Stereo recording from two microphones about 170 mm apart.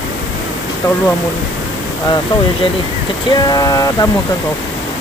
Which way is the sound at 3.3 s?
25° left (ahead or behind).